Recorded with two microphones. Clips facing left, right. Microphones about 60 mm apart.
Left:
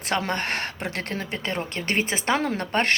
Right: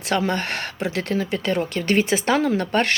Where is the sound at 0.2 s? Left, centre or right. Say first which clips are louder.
Right 3 dB; left.